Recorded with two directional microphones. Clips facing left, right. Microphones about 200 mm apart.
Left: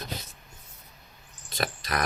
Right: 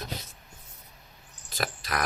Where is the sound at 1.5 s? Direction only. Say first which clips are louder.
Left 1 dB; centre (ahead or behind).